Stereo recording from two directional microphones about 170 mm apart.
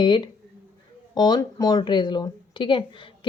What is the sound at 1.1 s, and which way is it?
A woman's voice, 20° left (ahead or behind).